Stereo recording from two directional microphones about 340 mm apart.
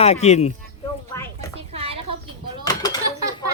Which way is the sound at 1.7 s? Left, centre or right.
Centre.